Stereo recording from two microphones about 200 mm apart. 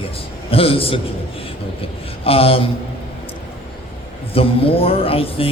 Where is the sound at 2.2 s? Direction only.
30° left (ahead or behind).